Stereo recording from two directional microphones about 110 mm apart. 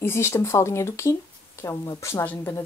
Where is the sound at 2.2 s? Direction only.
15° left (ahead or behind).